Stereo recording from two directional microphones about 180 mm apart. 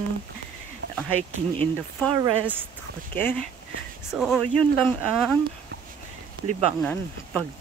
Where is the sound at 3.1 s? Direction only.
10° left (ahead or behind).